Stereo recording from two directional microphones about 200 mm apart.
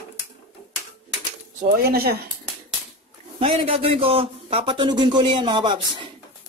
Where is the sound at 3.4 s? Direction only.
30° right (ahead or behind).